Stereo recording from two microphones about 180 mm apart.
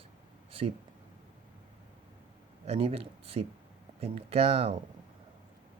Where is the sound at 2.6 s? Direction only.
35° right (ahead or behind).